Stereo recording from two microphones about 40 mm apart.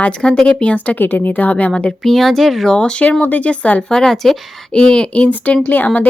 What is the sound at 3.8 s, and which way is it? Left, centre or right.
Speech, centre.